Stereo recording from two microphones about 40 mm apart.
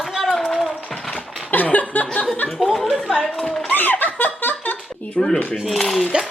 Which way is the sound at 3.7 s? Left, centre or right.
Left.